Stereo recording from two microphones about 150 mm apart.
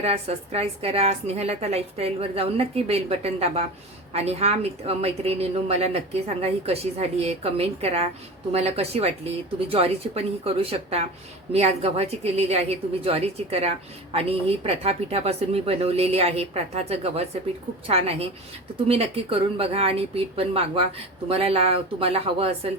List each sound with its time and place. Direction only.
0.0 s a woman's voice: 40° right (ahead or behind)